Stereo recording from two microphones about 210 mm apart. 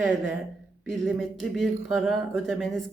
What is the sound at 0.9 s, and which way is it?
Speech, centre (ahead or behind).